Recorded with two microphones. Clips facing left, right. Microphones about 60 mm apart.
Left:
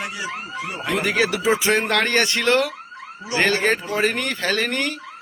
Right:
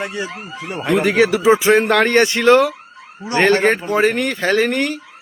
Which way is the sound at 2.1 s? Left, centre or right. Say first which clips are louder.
Right 6 dB; right.